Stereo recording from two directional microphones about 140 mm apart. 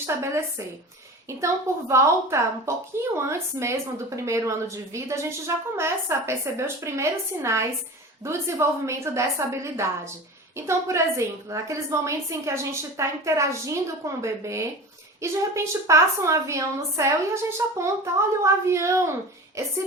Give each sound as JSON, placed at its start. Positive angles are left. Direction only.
{"t": 0.0, "sound": "a woman's voice", "side_deg": -20}